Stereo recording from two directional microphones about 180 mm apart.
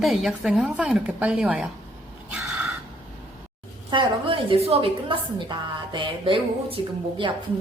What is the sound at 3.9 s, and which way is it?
A woman's voice, 30° right (ahead or behind).